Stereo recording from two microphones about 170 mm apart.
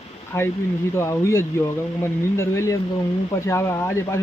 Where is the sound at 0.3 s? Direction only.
15° left (ahead or behind).